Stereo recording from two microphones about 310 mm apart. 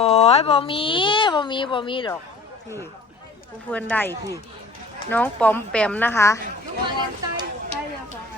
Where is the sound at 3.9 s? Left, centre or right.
Centre.